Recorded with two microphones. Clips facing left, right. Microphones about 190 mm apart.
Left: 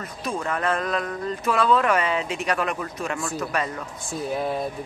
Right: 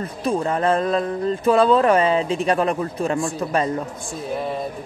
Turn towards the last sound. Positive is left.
turn(degrees=-30)  # may be behind; listen again after turning